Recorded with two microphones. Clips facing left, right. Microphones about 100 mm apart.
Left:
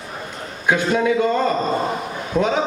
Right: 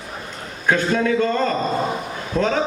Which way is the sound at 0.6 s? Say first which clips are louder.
Left 1 dB; 10° left (ahead or behind).